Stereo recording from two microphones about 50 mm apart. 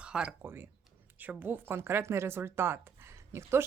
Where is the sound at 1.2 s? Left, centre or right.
Right.